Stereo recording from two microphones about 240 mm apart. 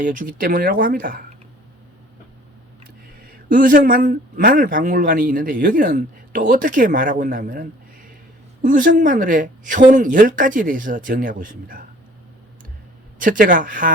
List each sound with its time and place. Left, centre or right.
0.0 s speech: right
3.2 s speech: right
13.1 s speech: right